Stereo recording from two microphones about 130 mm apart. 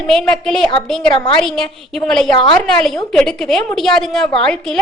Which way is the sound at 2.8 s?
5° left (ahead or behind).